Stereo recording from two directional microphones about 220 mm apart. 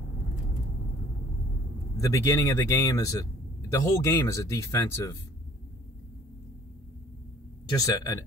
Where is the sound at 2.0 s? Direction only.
15° left (ahead or behind).